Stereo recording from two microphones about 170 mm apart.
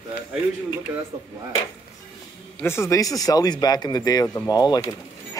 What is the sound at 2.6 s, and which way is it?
Speech, 15° left (ahead or behind).